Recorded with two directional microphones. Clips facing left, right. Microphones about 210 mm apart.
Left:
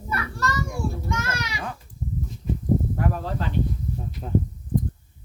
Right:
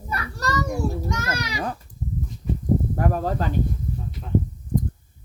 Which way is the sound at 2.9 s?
45° right (ahead or behind).